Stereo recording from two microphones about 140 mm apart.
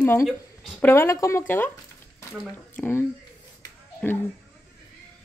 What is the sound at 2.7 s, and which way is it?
Speech, 15° left (ahead or behind).